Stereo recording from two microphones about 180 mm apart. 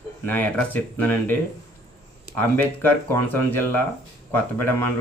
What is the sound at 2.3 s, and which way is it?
Speech, 10° left (ahead or behind).